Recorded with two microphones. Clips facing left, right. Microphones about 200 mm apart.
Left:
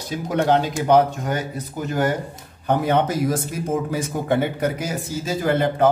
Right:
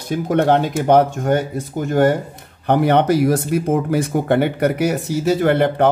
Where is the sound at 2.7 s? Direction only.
70° right (ahead or behind).